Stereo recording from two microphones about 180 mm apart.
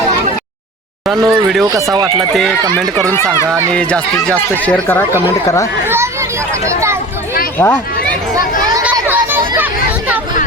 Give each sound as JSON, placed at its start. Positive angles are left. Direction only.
{"t": 1.0, "sound": "speech", "side_deg": 0}
{"t": 1.6, "sound": "speech", "side_deg": -20}
{"t": 2.3, "sound": "speech", "side_deg": 0}
{"t": 3.1, "sound": "speech", "side_deg": 15}
{"t": 7.6, "sound": "speech", "side_deg": 10}
{"t": 8.8, "sound": "a sound", "side_deg": -10}